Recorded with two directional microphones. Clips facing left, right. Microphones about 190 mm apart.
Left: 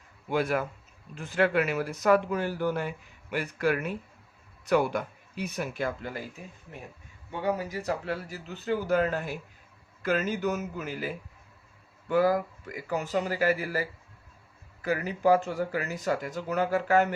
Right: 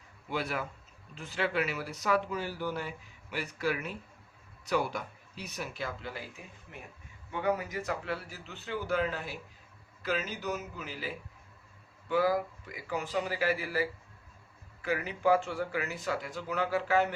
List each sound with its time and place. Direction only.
0.3 s speech: 50° left (ahead or behind)
7.4 s speech: 35° left (ahead or behind)